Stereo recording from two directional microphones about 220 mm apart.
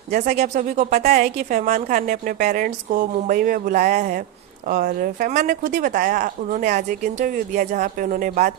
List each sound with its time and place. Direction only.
0.1 s a woman's voice: 35° right (ahead or behind)